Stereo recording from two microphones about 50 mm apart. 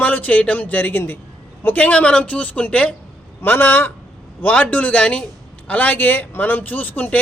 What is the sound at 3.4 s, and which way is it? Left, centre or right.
Speech, left.